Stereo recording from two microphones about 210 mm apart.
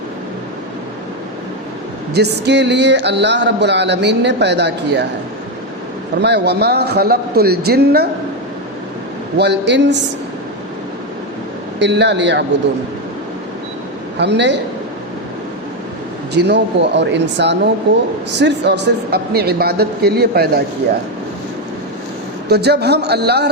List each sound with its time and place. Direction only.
2.1 s speech: 50° right (ahead or behind)
6.2 s speech: 55° right (ahead or behind)
9.4 s speech: 55° right (ahead or behind)
11.8 s speech: 55° right (ahead or behind)
14.2 s speech: 55° right (ahead or behind)
16.3 s speech: 55° right (ahead or behind)
22.4 s speech: 50° right (ahead or behind)